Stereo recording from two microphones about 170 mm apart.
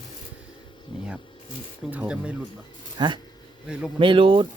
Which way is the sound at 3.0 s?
25° right (ahead or behind).